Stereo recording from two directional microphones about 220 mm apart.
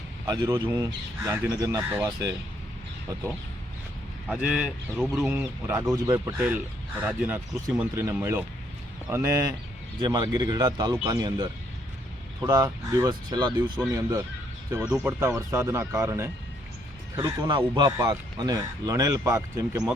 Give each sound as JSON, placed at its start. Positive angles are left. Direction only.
{"t": 0.3, "sound": "speech", "side_deg": -15}
{"t": 4.3, "sound": "speech", "side_deg": -5}